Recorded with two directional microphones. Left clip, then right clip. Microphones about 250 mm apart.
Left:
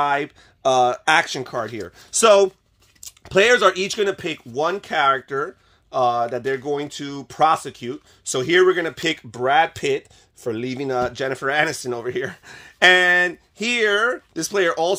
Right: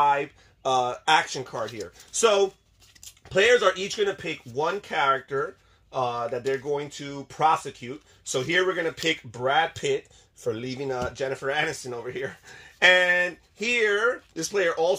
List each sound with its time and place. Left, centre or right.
0.0 s speech: left